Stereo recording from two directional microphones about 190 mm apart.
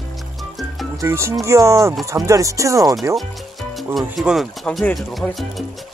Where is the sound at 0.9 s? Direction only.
15° right (ahead or behind).